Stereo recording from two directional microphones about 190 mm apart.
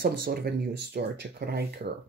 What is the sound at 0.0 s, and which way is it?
Speech, 55° right (ahead or behind).